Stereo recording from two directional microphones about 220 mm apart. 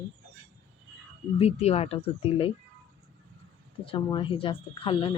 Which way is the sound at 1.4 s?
30° left (ahead or behind).